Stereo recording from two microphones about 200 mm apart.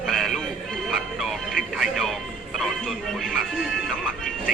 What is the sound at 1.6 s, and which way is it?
Music, centre (ahead or behind).